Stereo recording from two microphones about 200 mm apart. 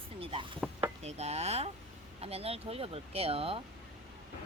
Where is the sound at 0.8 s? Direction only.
35° right (ahead or behind).